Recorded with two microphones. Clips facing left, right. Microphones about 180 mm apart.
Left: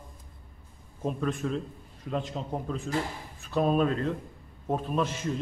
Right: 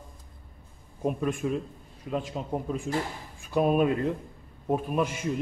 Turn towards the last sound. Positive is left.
turn(degrees=-10)  # may be behind; listen again after turning